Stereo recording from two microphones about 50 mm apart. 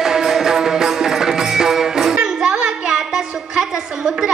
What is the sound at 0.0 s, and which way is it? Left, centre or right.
Music, centre.